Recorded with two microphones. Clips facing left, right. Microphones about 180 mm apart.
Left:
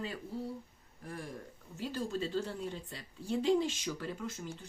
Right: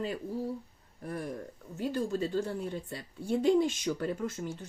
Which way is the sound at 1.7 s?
50° right (ahead or behind).